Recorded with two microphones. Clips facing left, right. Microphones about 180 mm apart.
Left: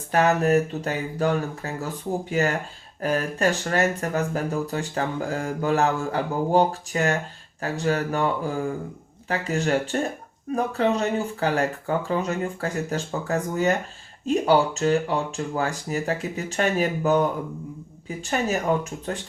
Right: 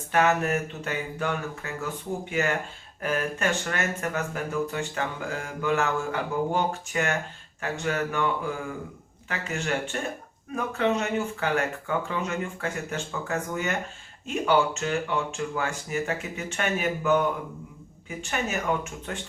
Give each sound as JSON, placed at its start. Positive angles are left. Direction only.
{"t": 0.1, "sound": "speech", "side_deg": 35}